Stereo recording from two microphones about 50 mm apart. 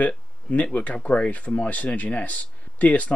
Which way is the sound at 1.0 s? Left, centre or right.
Left.